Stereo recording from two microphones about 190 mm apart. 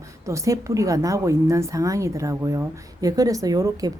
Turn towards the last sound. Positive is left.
turn(degrees=-20)  # may be behind; listen again after turning